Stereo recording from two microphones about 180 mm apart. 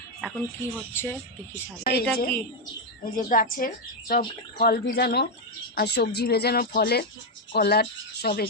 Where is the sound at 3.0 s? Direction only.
50° left (ahead or behind).